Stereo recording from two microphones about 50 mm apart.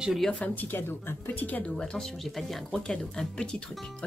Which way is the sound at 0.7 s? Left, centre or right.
Left.